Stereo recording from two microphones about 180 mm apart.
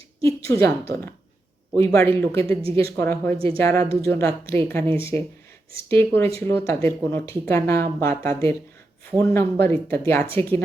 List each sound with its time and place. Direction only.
0.2 s a woman's voice: 15° left (ahead or behind)
1.7 s speech: 15° left (ahead or behind)
3.3 s speech: 30° right (ahead or behind)
3.6 s speech: 15° left (ahead or behind)
5.9 s speech: 10° left (ahead or behind)